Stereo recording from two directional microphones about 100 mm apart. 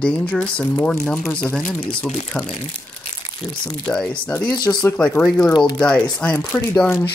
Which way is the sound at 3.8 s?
10° left (ahead or behind).